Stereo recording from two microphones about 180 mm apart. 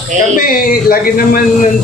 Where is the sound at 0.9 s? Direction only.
55° left (ahead or behind).